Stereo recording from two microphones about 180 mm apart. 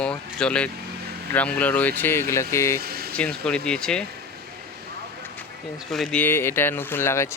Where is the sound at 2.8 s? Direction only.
60° right (ahead or behind).